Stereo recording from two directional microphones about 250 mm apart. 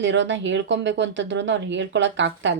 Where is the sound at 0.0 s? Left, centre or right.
Right.